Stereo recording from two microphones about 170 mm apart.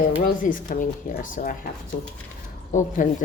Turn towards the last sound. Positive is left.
turn(degrees=45)  # may be behind; listen again after turning